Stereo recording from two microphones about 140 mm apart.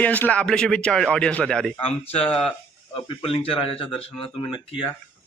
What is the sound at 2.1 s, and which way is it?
Speech, 45° left (ahead or behind).